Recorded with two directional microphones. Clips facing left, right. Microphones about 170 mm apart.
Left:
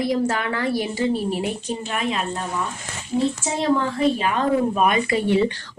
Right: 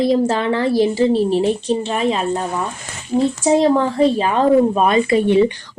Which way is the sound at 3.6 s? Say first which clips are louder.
Right 1 dB; 35° right (ahead or behind).